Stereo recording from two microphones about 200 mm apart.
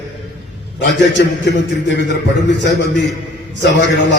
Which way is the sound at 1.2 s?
50° left (ahead or behind).